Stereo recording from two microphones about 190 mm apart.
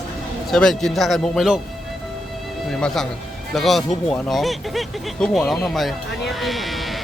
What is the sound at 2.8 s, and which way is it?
Speech, centre (ahead or behind).